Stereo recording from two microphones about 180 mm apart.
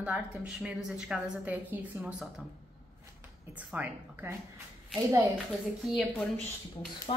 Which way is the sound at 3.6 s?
10° right (ahead or behind).